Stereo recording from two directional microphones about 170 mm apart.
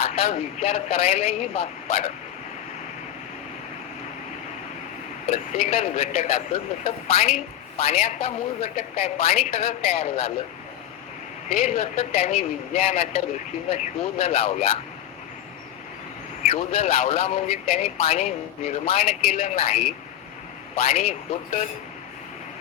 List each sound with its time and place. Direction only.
0.0 s speech: 35° left (ahead or behind)
5.3 s speech: 40° left (ahead or behind)
11.4 s speech: 40° left (ahead or behind)
16.4 s speech: 40° left (ahead or behind)